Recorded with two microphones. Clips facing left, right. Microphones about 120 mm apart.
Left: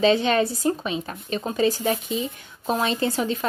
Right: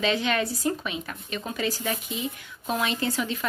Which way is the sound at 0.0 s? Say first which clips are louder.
Left 6 dB; 30° left (ahead or behind).